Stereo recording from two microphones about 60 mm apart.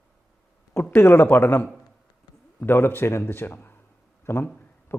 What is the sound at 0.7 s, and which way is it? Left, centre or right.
Speech, left.